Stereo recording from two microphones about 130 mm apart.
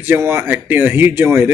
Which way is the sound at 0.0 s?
15° right (ahead or behind).